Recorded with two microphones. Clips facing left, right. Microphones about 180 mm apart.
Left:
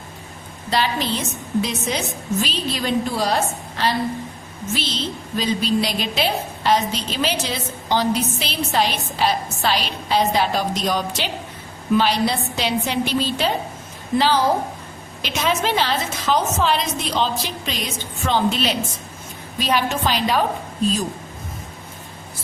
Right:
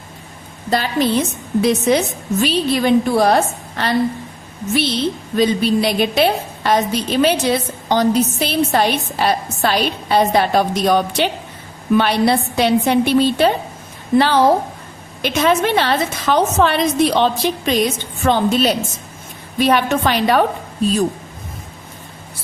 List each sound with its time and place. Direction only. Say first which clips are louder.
0.7 s a woman's voice: right 5 dB; 50° right (ahead or behind)
19.5 s a woman's voice: right 6 dB; 60° right (ahead or behind)